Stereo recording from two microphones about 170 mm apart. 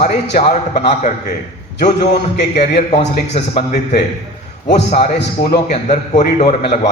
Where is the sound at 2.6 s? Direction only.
40° left (ahead or behind).